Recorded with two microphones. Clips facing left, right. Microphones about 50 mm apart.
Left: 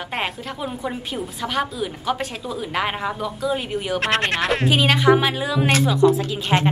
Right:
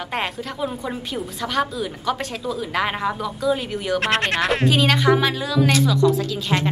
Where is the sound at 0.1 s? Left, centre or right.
Centre.